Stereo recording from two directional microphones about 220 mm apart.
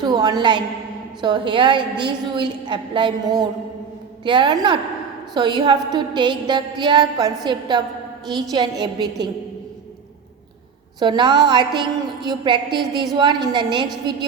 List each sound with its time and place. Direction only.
0.0 s music: 20° right (ahead or behind)
11.0 s music: 20° right (ahead or behind)